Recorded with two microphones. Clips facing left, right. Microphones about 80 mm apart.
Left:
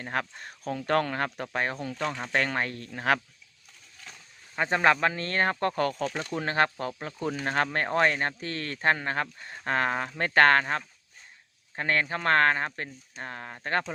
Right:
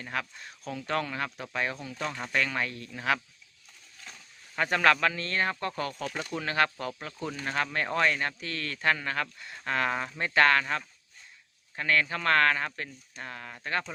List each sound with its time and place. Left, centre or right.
0.0 s speech: left
4.5 s speech: left
6.3 s speech: left